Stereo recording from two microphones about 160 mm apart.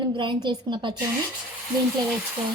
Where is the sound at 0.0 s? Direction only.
30° right (ahead or behind).